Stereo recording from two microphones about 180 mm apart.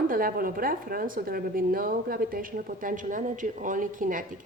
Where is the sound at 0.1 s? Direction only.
55° right (ahead or behind).